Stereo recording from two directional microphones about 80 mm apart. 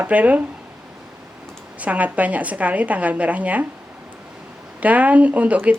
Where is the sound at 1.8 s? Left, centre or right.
Centre.